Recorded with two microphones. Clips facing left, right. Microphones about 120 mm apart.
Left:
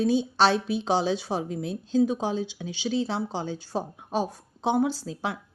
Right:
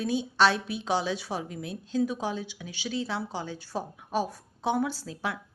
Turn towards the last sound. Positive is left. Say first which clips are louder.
# left 3 dB
turn(degrees=25)  # may be behind; listen again after turning